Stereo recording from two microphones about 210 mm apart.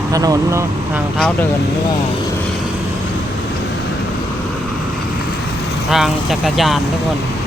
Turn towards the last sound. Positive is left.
turn(degrees=0)  # may be behind; listen again after turning